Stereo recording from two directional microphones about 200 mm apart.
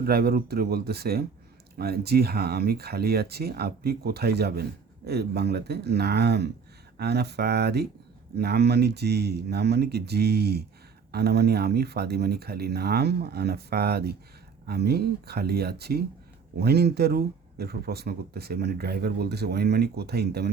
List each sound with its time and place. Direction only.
0.0 s speech: 50° right (ahead or behind)